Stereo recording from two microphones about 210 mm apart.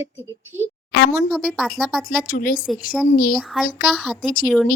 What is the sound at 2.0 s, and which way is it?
Speech, 40° left (ahead or behind).